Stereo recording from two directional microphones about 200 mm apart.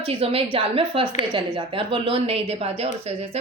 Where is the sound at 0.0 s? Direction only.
30° right (ahead or behind).